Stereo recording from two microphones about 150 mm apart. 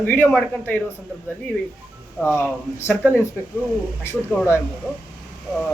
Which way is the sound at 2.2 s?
15° left (ahead or behind).